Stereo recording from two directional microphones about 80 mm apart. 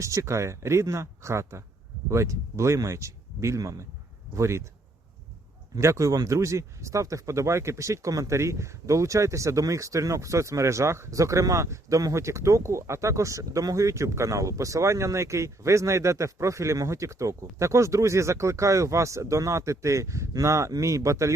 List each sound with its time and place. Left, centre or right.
0.0 s speech: right
5.7 s speech: right